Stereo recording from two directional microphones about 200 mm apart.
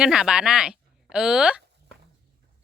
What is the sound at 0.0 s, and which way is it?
Speech, 5° right (ahead or behind).